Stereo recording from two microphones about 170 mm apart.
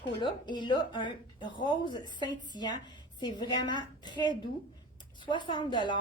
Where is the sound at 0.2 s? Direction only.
25° left (ahead or behind).